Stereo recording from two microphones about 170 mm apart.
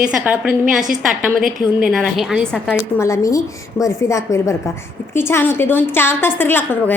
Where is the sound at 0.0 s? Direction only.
5° right (ahead or behind).